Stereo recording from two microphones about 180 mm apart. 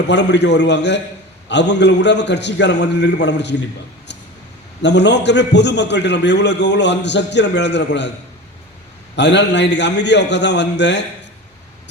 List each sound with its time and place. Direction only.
0.1 s a man's voice: 75° left (ahead or behind)
4.8 s a man's voice: 75° left (ahead or behind)
9.1 s a man's voice: 75° left (ahead or behind)